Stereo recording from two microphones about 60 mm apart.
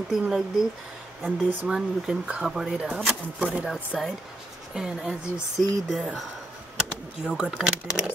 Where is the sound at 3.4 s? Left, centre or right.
Right; by 6.0 s centre.